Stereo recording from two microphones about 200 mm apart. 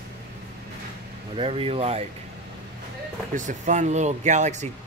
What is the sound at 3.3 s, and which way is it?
Speech, 40° right (ahead or behind).